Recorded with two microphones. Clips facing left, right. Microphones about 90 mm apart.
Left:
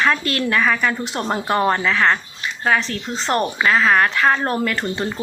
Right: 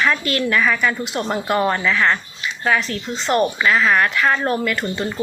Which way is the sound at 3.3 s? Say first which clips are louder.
Right 1 dB; 35° left (ahead or behind).